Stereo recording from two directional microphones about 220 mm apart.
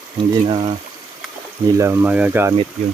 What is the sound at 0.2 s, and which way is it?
Speech, 25° right (ahead or behind).